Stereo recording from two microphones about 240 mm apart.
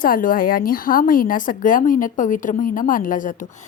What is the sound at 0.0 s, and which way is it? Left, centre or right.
A woman's voice, left.